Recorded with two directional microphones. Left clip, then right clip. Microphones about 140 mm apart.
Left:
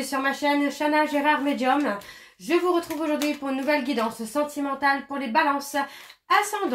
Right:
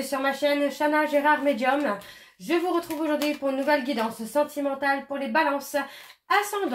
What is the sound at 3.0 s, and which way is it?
Speech, 35° right (ahead or behind).